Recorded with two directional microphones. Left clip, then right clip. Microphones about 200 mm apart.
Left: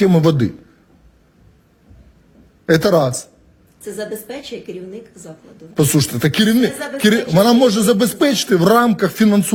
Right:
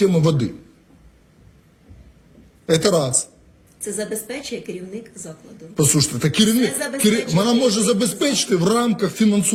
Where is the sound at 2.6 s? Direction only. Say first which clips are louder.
Left 4 dB; 35° left (ahead or behind).